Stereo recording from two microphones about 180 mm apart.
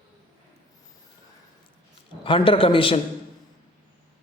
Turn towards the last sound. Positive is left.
turn(degrees=30)  # may be behind; listen again after turning